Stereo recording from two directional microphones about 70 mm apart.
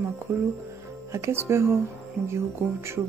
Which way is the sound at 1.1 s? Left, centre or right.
Right.